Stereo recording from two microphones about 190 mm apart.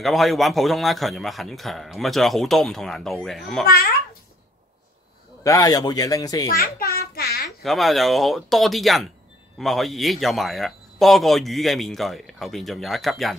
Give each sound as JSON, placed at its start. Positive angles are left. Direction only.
{"t": 0.0, "sound": "a man's voice", "side_deg": 0}
{"t": 3.6, "sound": "a child's voice", "side_deg": 55}
{"t": 5.4, "sound": "a man's voice", "side_deg": 15}
{"t": 6.5, "sound": "a sound", "side_deg": 55}
{"t": 7.6, "sound": "a man's voice", "side_deg": 0}